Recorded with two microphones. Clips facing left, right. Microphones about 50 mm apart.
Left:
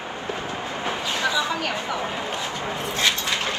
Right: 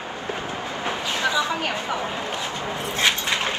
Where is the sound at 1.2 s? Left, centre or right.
Right.